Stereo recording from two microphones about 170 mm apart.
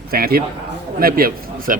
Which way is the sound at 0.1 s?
60° right (ahead or behind).